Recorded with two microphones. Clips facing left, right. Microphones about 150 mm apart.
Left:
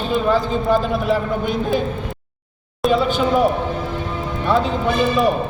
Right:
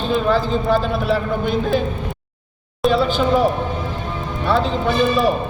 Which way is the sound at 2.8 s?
Centre (ahead or behind).